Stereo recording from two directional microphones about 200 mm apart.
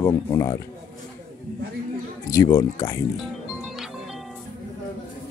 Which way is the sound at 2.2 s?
15° left (ahead or behind).